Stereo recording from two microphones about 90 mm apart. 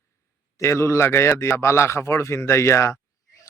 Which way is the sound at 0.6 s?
30° left (ahead or behind).